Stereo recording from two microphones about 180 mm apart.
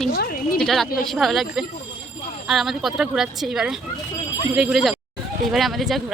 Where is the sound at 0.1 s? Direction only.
60° left (ahead or behind).